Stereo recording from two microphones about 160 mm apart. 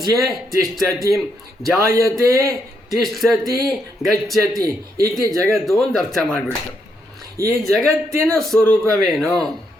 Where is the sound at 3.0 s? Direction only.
Centre (ahead or behind).